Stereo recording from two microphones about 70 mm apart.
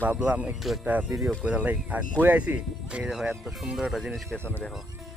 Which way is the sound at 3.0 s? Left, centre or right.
Centre.